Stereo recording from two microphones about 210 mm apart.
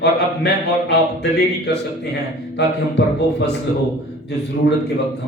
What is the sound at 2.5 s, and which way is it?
Speech, 55° left (ahead or behind).